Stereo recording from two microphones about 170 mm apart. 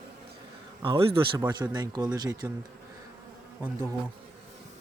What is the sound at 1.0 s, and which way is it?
Speech, 30° right (ahead or behind).